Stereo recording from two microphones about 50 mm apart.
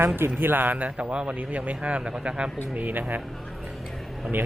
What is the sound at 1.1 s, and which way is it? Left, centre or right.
Speech, centre.